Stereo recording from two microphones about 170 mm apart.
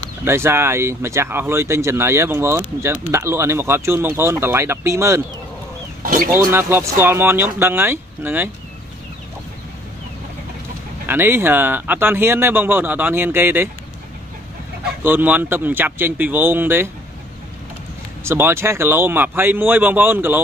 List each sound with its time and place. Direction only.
0.2 s speech: 15° right (ahead or behind)
6.0 s speech: 55° right (ahead or behind)
6.3 s speech: 15° right (ahead or behind)
11.1 s speech: 15° right (ahead or behind)
15.0 s speech: 10° right (ahead or behind)
18.2 s speech: 15° right (ahead or behind)